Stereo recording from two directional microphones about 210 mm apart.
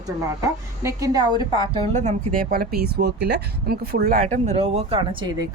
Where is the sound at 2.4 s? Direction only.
45° right (ahead or behind).